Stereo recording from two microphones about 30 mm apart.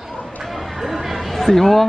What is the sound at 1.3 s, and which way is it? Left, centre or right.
Speech, centre.